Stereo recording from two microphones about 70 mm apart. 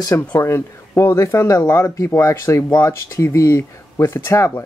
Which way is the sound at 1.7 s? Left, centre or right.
Left.